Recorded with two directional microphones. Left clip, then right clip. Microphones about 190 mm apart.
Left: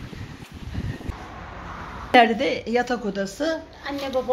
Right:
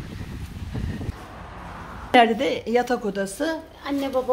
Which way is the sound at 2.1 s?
10° right (ahead or behind).